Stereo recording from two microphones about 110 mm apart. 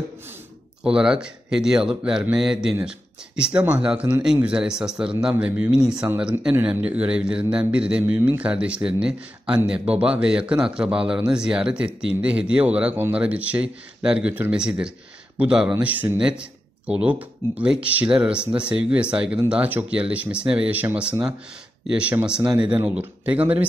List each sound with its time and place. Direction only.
0.8 s speech: 5° right (ahead or behind)
8.0 s a man's voice: 20° right (ahead or behind)